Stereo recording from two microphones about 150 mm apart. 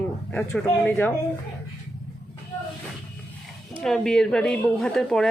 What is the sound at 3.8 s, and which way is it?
Speech, 5° left (ahead or behind).